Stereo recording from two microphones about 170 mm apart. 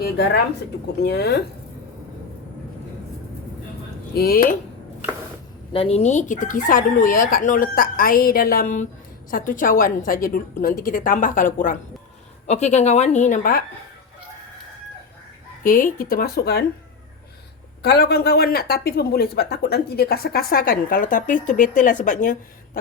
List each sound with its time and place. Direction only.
0.0 s a woman's voice: 70° left (ahead or behind)
4.1 s speech: 65° left (ahead or behind)
5.7 s chicken: 35° left (ahead or behind)
9.3 s speech: 55° left (ahead or behind)
12.5 s chicken: 40° left (ahead or behind)
15.6 s speech: 55° left (ahead or behind)
17.8 s speech: 75° left (ahead or behind); by 22.8 s 50° left (ahead or behind)